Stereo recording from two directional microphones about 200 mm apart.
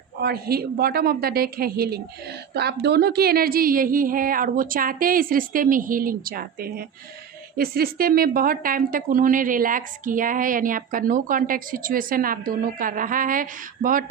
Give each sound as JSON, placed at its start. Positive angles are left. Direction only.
{"t": 0.2, "sound": "speech", "side_deg": -50}